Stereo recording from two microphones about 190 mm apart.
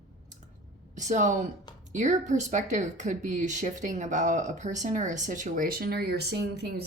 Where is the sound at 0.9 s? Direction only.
40° right (ahead or behind).